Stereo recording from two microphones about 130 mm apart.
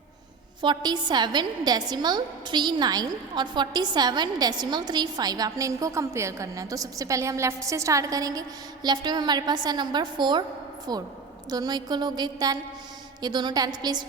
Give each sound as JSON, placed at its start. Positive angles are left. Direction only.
{"t": 0.6, "sound": "a woman's voice", "side_deg": -35}